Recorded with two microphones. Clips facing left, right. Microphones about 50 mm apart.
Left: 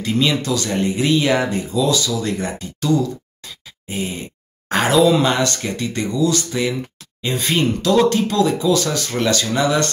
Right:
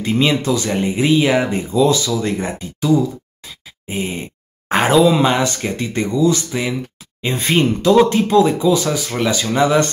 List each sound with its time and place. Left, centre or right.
0.0 s speech: right
4.9 s speech: centre
9.6 s speech: right